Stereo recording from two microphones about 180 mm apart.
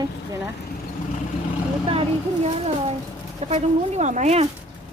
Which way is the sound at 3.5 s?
40° right (ahead or behind).